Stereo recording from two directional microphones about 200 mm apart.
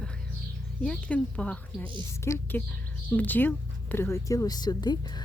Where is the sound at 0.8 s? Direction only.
5° left (ahead or behind).